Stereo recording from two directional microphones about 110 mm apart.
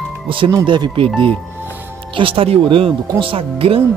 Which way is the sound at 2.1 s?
55° right (ahead or behind).